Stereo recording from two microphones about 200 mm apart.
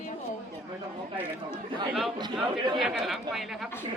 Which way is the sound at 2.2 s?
20° right (ahead or behind).